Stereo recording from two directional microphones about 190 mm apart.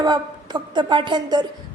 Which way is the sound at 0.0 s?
20° right (ahead or behind).